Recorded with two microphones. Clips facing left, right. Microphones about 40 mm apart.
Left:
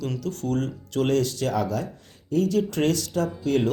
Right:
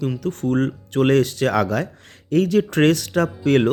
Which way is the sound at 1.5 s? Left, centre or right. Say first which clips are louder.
Right 6 dB; right.